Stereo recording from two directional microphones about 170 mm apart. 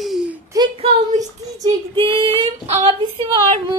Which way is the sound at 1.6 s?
30° right (ahead or behind).